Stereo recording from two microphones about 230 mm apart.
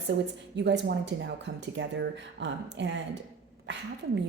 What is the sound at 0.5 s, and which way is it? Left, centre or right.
A woman's voice, right.